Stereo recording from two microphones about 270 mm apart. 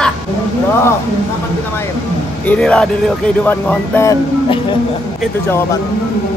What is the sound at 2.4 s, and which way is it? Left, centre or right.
Speech, centre.